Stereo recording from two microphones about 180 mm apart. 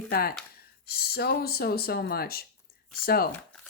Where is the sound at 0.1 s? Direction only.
60° left (ahead or behind).